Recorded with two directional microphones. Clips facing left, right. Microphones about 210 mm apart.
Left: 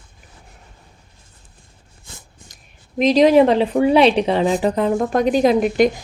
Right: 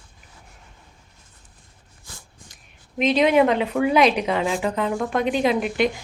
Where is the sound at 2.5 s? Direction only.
40° left (ahead or behind).